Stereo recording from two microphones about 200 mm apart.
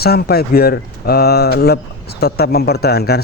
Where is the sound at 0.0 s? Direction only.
50° left (ahead or behind).